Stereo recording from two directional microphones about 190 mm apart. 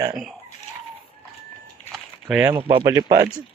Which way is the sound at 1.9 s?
5° right (ahead or behind).